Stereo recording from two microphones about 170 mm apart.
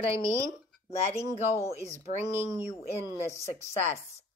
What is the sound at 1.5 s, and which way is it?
Speech, 15° left (ahead or behind).